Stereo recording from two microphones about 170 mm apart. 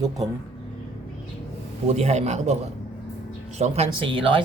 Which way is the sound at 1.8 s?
40° right (ahead or behind).